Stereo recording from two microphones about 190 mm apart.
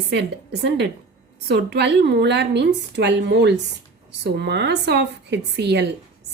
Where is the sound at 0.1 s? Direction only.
65° right (ahead or behind).